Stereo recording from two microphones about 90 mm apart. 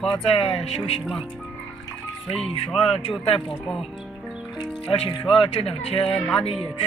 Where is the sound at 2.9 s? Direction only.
90° left.